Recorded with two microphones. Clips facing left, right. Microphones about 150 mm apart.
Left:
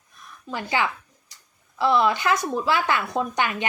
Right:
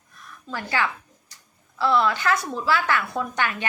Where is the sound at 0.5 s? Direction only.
15° left (ahead or behind).